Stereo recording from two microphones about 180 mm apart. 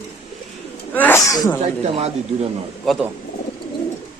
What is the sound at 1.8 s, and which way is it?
Speech, 35° right (ahead or behind).